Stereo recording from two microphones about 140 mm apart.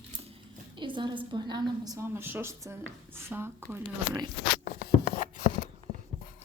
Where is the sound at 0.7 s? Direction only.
35° right (ahead or behind); by 3.8 s 15° right (ahead or behind).